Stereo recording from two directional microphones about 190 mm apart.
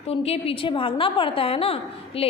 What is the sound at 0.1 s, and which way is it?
A woman's voice, 30° left (ahead or behind).